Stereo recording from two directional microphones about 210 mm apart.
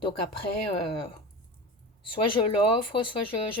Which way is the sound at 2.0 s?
25° left (ahead or behind).